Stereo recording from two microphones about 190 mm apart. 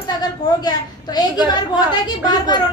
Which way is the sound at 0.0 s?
20° left (ahead or behind).